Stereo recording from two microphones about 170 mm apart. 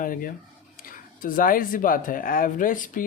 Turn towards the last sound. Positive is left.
turn(degrees=50)  # may be behind; listen again after turning